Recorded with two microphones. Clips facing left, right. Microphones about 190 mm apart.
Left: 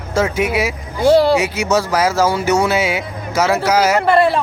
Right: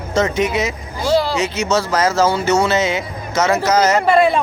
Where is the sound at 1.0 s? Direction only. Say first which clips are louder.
Left 6 dB; 60° left (ahead or behind).